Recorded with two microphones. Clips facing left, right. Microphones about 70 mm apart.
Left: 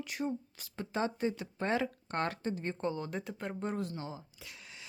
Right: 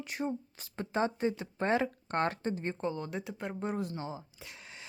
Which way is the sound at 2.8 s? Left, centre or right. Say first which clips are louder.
Even; centre.